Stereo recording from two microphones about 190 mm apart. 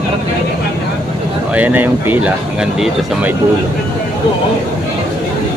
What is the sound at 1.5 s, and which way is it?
Speech, 10° right (ahead or behind).